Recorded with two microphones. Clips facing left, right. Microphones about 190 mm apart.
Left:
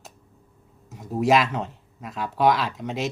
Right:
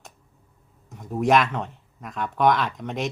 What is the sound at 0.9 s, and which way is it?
Speech, 5° left (ahead or behind).